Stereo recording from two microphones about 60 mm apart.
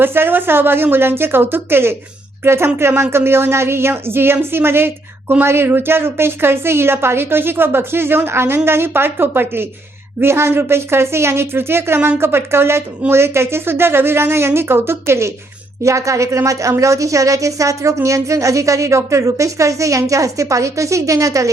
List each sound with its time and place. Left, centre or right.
0.0 s a woman's voice: right
15.8 s a woman's voice: right